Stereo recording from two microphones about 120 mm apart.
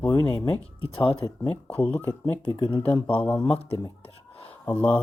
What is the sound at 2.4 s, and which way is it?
Speech, 45° left (ahead or behind).